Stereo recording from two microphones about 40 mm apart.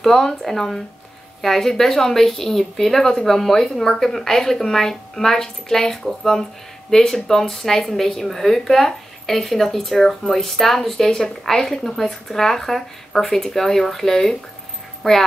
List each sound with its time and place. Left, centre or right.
0.0 s speech: centre